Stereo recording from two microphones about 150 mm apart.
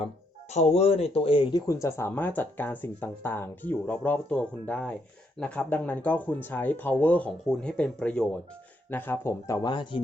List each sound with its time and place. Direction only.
0.5 s speech: 45° left (ahead or behind)
1.6 s speech: 20° left (ahead or behind)
9.6 s speech: 30° left (ahead or behind)